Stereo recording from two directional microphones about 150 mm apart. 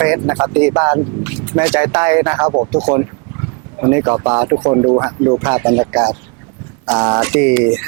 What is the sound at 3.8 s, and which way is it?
Speech, 20° right (ahead or behind).